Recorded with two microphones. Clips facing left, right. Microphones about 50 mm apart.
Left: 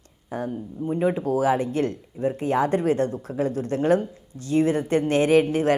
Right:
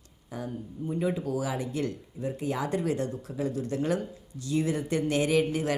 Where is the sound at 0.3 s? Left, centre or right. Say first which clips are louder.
Left 7 dB; left.